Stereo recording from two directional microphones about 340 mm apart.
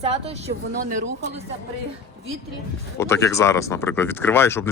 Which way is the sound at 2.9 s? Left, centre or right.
Centre.